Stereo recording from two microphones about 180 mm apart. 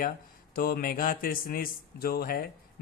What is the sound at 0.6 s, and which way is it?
A man's voice, 50° left (ahead or behind).